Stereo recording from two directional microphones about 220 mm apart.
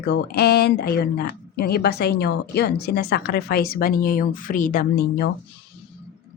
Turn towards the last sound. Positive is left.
turn(degrees=45)  # may be behind; listen again after turning